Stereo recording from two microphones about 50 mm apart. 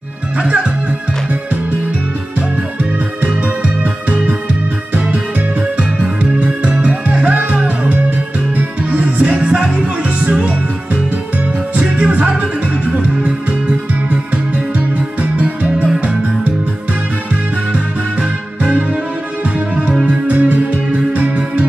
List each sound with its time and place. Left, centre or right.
0.4 s speech: right
3.3 s music: right
6.4 s music: right
11.8 s music: right
18.6 s music: right